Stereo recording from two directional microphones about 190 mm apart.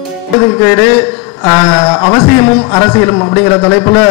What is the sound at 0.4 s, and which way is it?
A man's voice, 15° left (ahead or behind).